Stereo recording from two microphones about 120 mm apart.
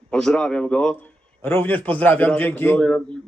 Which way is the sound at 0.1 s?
5° left (ahead or behind).